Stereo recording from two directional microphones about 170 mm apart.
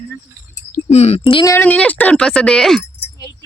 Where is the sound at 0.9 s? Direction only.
40° left (ahead or behind).